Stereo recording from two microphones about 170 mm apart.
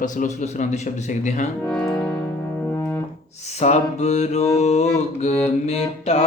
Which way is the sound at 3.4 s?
40° left (ahead or behind).